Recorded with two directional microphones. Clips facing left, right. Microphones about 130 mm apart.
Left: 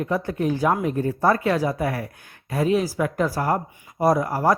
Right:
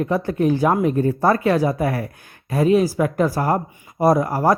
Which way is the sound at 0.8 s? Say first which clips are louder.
Right 3 dB; 45° right (ahead or behind).